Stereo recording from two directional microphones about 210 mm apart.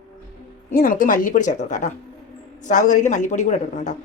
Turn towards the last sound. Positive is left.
turn(degrees=35)  # may be behind; listen again after turning